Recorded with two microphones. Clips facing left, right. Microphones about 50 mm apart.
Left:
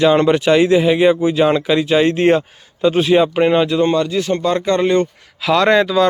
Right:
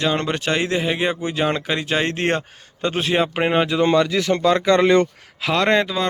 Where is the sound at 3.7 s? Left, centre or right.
Right.